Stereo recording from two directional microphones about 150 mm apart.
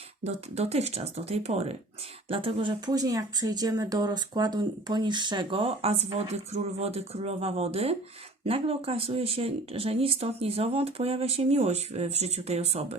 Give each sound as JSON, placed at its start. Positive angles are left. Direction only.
{"t": 0.3, "sound": "speech", "side_deg": -45}